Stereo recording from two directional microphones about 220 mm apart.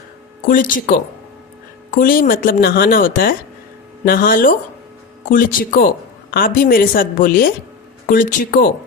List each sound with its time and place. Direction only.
0.4 s speech: 35° left (ahead or behind)
2.0 s speech: 40° left (ahead or behind)